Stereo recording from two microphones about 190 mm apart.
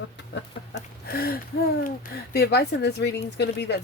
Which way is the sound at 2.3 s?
55° left (ahead or behind).